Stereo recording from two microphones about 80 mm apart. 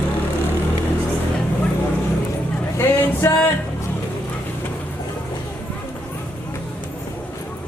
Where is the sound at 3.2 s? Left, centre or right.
Left.